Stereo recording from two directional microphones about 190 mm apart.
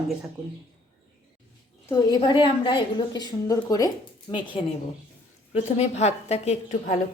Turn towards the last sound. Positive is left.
turn(degrees=35)  # may be behind; listen again after turning